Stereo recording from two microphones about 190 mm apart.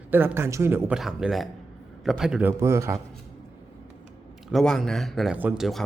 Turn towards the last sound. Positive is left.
turn(degrees=0)  # may be behind; listen again after turning